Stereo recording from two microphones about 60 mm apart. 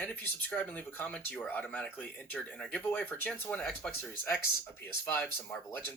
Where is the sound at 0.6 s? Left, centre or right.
Left.